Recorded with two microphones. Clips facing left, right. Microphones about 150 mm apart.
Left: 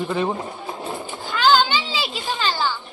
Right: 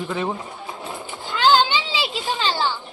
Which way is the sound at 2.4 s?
25° right (ahead or behind).